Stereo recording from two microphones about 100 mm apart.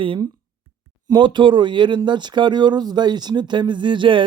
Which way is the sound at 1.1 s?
50° right (ahead or behind).